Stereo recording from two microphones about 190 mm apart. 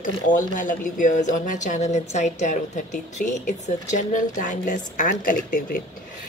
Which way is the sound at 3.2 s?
50° left (ahead or behind).